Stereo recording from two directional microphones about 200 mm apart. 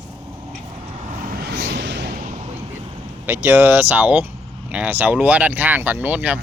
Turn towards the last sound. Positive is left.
turn(degrees=-5)  # may be behind; listen again after turning